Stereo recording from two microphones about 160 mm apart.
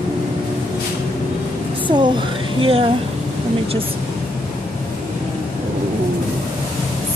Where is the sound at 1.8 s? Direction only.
30° right (ahead or behind).